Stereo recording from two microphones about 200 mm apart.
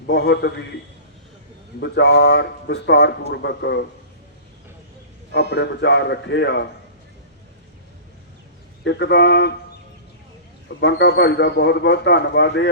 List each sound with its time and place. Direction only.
0.1 s speech: 55° left (ahead or behind)
1.8 s speech: 60° left (ahead or behind)
5.3 s speech: 60° left (ahead or behind)
8.8 s speech: 60° left (ahead or behind)
10.7 s speech: 60° left (ahead or behind)